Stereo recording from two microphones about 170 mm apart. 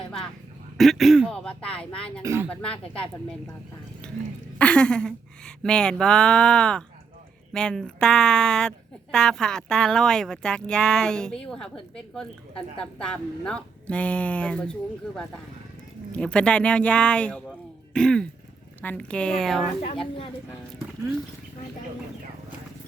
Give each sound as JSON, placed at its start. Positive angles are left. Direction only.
{"t": 0.8, "sound": "speech", "side_deg": 0}
{"t": 2.2, "sound": "speech", "side_deg": -15}
{"t": 2.5, "sound": "speech", "side_deg": 5}
{"t": 4.0, "sound": "throat clearing", "side_deg": 5}
{"t": 4.5, "sound": "speech", "side_deg": 5}